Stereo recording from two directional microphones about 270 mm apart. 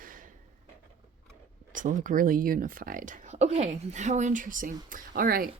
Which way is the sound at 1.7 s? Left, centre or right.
Right.